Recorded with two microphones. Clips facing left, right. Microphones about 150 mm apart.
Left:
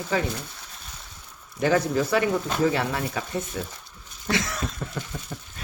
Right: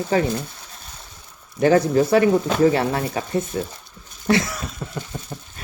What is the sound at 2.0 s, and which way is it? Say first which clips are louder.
Speech: right 7 dB; 35° right (ahead or behind).